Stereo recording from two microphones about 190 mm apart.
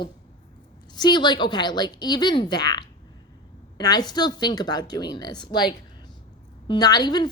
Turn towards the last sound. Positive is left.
turn(degrees=20)  # may be behind; listen again after turning